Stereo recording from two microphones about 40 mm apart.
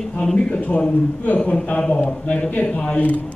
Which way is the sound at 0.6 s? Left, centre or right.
Left.